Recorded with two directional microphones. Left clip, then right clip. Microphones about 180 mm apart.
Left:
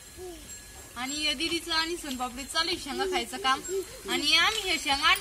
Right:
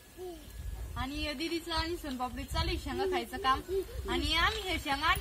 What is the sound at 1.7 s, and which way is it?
Speech, 15° right (ahead or behind).